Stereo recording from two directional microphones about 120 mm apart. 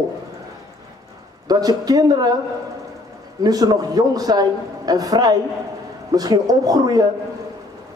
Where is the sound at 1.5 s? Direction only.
30° right (ahead or behind).